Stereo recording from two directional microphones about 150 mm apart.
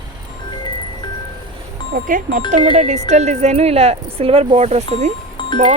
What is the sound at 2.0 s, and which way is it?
Speech, 60° right (ahead or behind).